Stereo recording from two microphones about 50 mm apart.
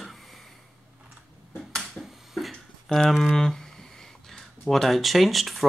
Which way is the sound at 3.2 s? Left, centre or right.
Centre.